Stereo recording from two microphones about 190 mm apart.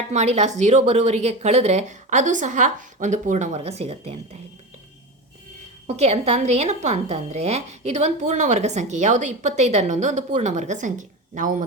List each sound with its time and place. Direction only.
0.1 s a woman's voice: 35° right (ahead or behind)
5.9 s a woman's voice: 35° right (ahead or behind)